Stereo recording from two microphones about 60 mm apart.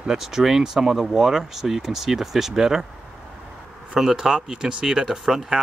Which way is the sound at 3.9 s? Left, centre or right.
Centre.